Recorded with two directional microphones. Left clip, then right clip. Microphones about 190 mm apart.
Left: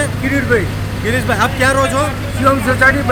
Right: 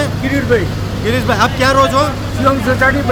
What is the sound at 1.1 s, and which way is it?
Speech, centre (ahead or behind).